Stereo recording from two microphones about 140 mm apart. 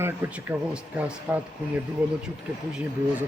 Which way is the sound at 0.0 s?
15° right (ahead or behind).